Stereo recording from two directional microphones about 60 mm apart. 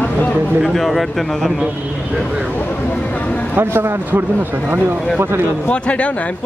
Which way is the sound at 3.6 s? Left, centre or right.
Right.